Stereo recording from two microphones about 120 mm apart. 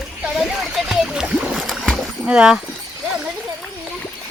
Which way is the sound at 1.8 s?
Centre (ahead or behind).